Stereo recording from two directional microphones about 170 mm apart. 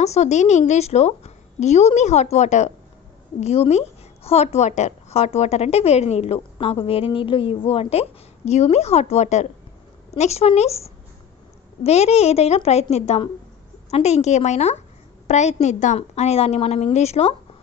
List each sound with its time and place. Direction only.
0.0 s a woman's voice: 40° left (ahead or behind)